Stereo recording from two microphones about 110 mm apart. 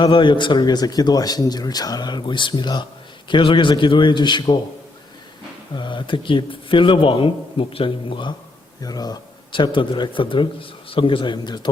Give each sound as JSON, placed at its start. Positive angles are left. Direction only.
{"t": 0.0, "sound": "a man's voice", "side_deg": 50}
{"t": 5.7, "sound": "speech", "side_deg": 45}
{"t": 8.8, "sound": "speech", "side_deg": 35}